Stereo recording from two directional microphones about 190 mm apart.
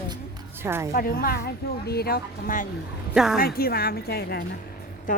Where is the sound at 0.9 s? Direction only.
50° left (ahead or behind).